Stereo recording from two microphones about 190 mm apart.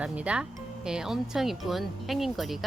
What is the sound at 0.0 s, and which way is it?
Speech, 5° right (ahead or behind).